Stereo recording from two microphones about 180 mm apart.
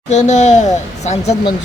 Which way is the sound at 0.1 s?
40° left (ahead or behind).